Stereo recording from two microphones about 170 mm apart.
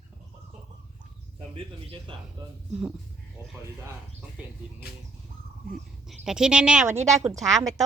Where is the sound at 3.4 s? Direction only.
15° right (ahead or behind).